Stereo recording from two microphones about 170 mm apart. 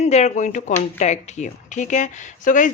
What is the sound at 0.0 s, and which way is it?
Speech, 40° left (ahead or behind).